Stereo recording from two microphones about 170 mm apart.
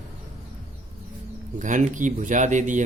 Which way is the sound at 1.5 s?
50° right (ahead or behind).